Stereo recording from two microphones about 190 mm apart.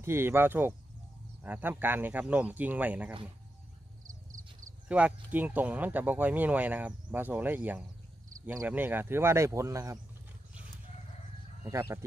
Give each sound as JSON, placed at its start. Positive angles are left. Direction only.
{"t": 0.0, "sound": "speech", "side_deg": -15}
{"t": 4.1, "sound": "a sound", "side_deg": -45}
{"t": 4.8, "sound": "speech", "side_deg": -5}
{"t": 11.6, "sound": "speech", "side_deg": -15}